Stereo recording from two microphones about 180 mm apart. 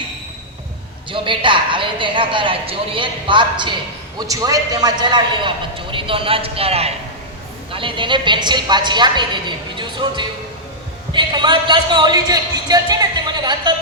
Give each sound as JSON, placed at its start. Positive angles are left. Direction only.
{"t": 1.1, "sound": "a man's voice", "side_deg": -25}